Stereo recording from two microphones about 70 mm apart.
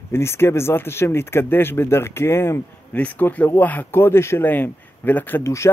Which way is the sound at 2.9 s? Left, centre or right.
Left.